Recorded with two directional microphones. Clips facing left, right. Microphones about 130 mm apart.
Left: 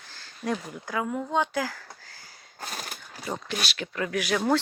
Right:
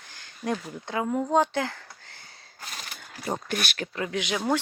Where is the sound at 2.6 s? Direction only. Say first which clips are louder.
Left 4 dB; 45° left (ahead or behind).